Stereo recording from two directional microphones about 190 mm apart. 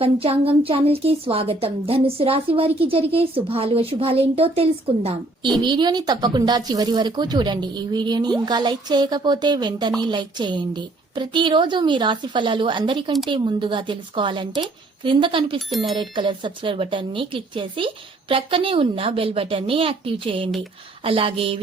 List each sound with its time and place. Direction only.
0.0 s a woman's voice: 30° right (ahead or behind)